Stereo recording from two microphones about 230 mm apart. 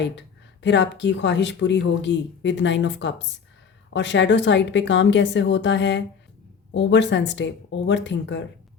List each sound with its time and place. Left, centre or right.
0.0 s speech: left